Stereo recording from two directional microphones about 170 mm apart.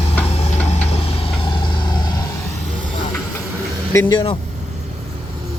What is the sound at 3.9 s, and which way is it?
Speech, 20° left (ahead or behind).